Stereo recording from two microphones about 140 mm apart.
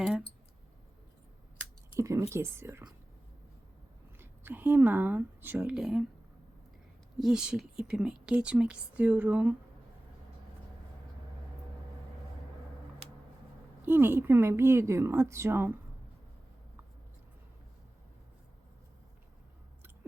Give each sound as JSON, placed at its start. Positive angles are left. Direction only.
{"t": 0.0, "sound": "clicking", "side_deg": -5}
{"t": 2.0, "sound": "speech", "side_deg": -20}
{"t": 4.2, "sound": "speech", "side_deg": -15}
{"t": 7.2, "sound": "speech", "side_deg": -5}
{"t": 13.8, "sound": "speech", "side_deg": -15}